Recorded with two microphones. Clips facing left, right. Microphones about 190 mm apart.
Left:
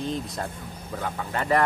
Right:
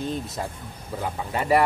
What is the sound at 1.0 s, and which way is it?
Speech, 10° right (ahead or behind).